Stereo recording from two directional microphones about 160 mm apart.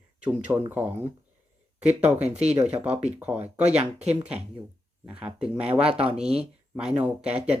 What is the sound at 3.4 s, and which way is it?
Speech, 40° right (ahead or behind).